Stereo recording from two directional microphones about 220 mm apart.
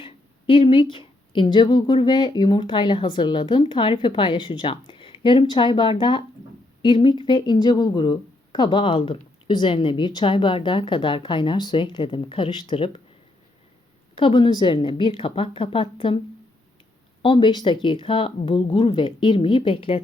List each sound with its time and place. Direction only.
0.0 s speech: 25° left (ahead or behind)
14.2 s speech: 20° left (ahead or behind)
17.2 s speech: 20° left (ahead or behind)